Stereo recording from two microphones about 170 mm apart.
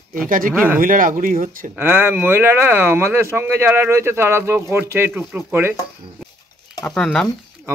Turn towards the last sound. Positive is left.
turn(degrees=5)  # may be behind; listen again after turning